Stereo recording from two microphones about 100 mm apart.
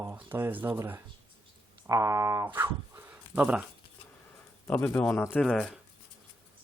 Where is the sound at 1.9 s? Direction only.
30° right (ahead or behind).